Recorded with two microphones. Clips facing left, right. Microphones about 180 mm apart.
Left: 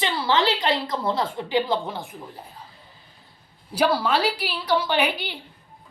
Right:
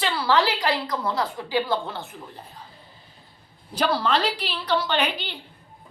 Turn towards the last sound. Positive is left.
turn(degrees=10)  # may be behind; listen again after turning